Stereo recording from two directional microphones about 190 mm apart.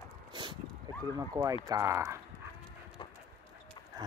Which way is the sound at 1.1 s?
20° right (ahead or behind).